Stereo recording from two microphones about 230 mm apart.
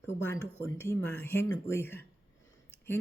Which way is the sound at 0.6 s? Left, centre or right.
Centre.